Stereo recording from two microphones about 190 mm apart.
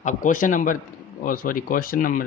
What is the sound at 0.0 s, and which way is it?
A man's voice, 45° left (ahead or behind).